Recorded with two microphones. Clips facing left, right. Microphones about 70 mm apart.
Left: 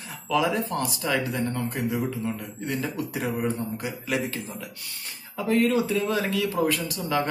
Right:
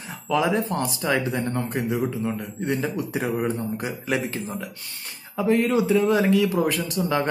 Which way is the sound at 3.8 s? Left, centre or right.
Right.